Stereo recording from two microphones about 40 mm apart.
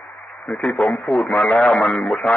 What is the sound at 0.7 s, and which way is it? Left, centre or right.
Speech, left.